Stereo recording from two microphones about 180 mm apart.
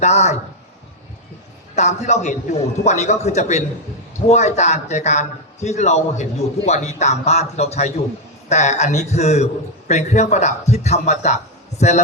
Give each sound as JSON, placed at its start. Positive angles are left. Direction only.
{"t": 0.0, "sound": "a man's voice", "side_deg": 40}
{"t": 1.7, "sound": "a man's voice", "side_deg": 40}